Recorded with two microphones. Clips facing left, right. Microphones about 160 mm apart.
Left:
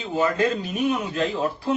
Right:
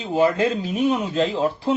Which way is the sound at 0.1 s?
25° right (ahead or behind).